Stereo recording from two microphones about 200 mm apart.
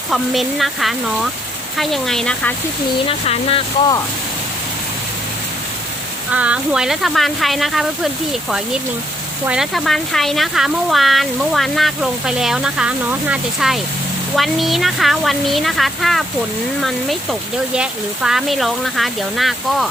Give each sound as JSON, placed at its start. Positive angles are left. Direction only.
{"t": 0.1, "sound": "speech", "side_deg": 0}
{"t": 3.1, "sound": "speech", "side_deg": 25}
{"t": 6.3, "sound": "speech", "side_deg": -5}
{"t": 17.7, "sound": "speech", "side_deg": -5}